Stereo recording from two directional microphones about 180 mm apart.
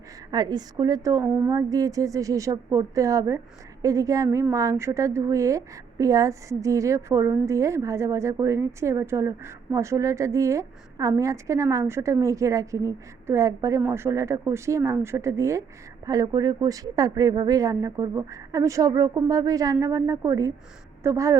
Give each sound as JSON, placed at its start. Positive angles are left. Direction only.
{"t": 0.3, "sound": "a woman's voice", "side_deg": -25}